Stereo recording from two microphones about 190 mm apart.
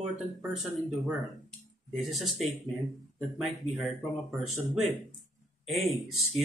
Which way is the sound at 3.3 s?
Centre (ahead or behind).